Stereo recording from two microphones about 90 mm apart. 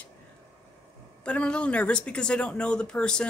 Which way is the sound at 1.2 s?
10° left (ahead or behind).